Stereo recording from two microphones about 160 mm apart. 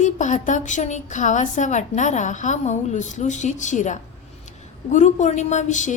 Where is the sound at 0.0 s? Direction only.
50° left (ahead or behind).